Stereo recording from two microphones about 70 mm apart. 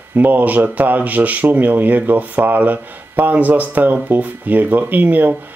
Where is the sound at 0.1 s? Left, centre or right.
Right.